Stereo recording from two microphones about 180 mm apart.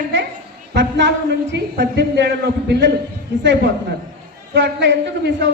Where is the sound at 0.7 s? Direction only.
80° right.